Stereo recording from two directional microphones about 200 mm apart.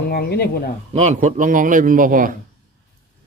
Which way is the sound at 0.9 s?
35° right (ahead or behind).